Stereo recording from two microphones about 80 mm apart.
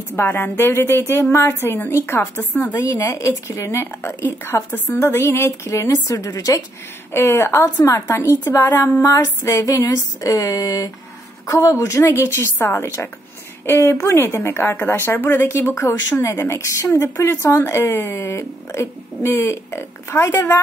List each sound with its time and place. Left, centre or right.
0.1 s a woman's voice: left
3.0 s speech: left
7.2 s speech: left
11.4 s speech: left